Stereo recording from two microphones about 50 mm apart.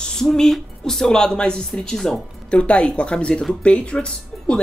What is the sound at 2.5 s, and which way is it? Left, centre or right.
Speech, left.